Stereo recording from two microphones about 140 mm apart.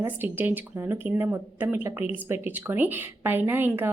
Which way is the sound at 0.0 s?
15° right (ahead or behind).